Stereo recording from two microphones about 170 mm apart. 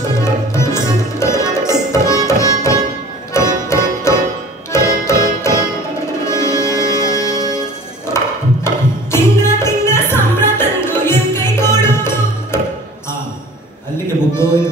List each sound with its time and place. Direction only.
0.1 s music: 15° left (ahead or behind)
8.6 s music: 15° left (ahead or behind)